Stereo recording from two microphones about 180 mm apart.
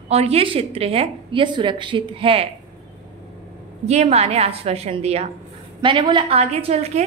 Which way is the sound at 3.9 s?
35° right (ahead or behind).